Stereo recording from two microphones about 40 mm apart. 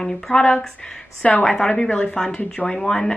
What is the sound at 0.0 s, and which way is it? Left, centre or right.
Speech, centre.